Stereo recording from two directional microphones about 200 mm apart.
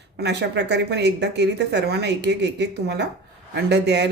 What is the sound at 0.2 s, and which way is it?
Speech, 60° right (ahead or behind).